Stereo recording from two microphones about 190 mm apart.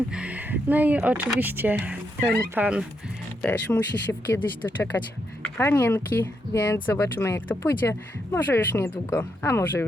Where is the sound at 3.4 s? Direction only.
10° left (ahead or behind).